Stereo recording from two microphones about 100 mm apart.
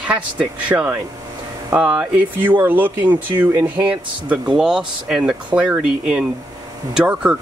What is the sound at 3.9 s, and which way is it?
Speech, 10° right (ahead or behind).